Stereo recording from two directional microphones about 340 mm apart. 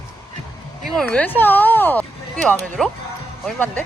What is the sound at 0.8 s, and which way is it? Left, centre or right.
Speech, centre.